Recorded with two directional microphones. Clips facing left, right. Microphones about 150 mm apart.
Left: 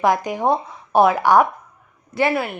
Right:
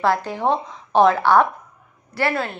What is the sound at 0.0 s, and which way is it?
A woman's voice, 15° left (ahead or behind).